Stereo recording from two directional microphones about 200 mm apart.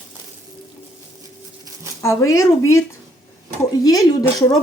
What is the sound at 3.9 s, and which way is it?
Speech, 15° left (ahead or behind).